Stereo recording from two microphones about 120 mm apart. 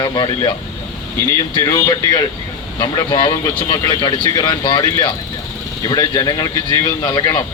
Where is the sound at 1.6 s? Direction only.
30° left (ahead or behind).